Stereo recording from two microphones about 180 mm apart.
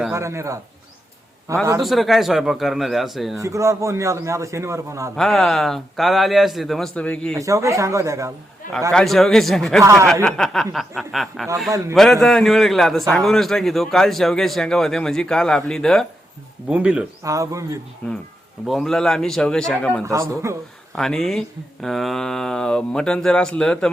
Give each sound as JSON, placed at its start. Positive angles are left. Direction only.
{"t": 0.1, "sound": "a man's voice", "side_deg": -15}
{"t": 1.8, "sound": "a man's voice", "side_deg": 0}
{"t": 3.3, "sound": "a man's voice", "side_deg": -15}
{"t": 5.1, "sound": "a man's voice", "side_deg": 0}
{"t": 7.3, "sound": "a man's voice", "side_deg": -15}
{"t": 8.9, "sound": "a man's voice", "side_deg": 5}
{"t": 9.8, "sound": "a man's voice", "side_deg": -15}
{"t": 10.2, "sound": "a man's voice", "side_deg": 5}
{"t": 17.2, "sound": "a man's voice", "side_deg": -15}
{"t": 18.0, "sound": "a man's voice", "side_deg": 10}
{"t": 20.1, "sound": "a man's voice", "side_deg": -15}
{"t": 20.9, "sound": "a man's voice", "side_deg": 5}